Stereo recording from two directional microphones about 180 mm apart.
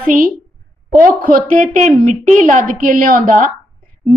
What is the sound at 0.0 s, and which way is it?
A woman's voice, 50° right (ahead or behind).